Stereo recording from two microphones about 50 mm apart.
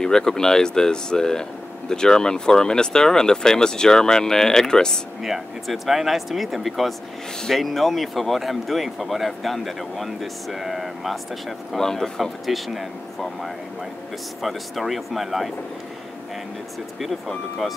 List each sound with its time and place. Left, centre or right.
0.0 s speech: centre
5.2 s speech: centre
17.0 s speech: centre